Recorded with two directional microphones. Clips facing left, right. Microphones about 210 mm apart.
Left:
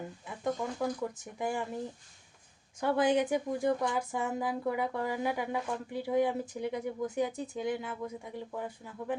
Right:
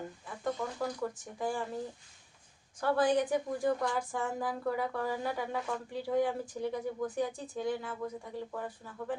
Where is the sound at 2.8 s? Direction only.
20° left (ahead or behind).